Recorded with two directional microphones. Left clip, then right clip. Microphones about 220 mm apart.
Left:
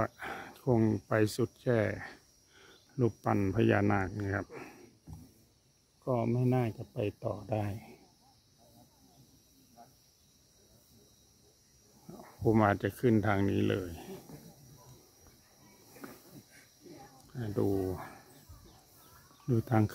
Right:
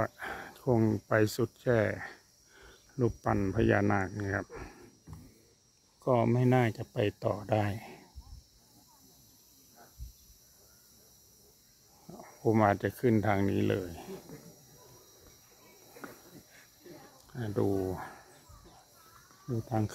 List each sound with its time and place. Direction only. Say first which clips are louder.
0.0 s speech: right 1 dB; centre (ahead or behind)
6.0 s speech: right 5 dB; 20° right (ahead or behind)
12.1 s speech: even; 5° left (ahead or behind)
17.3 s speech: right 1 dB; 5° right (ahead or behind)